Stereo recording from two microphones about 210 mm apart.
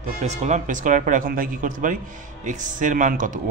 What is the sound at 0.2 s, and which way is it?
A man's voice, 35° right (ahead or behind).